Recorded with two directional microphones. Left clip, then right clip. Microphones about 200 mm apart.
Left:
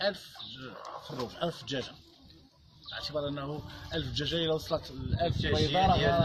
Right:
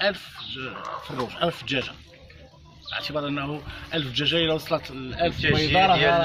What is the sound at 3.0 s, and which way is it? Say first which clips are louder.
A man's voice: right 5 dB; 25° left (ahead or behind).